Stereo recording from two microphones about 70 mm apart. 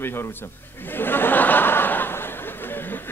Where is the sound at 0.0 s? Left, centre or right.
Left.